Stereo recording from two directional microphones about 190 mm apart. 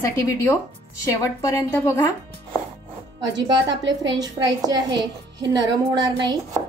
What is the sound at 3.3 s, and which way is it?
Speech, 65° right (ahead or behind).